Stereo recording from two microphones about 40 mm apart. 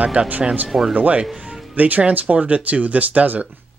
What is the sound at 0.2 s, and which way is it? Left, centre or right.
Speech, right.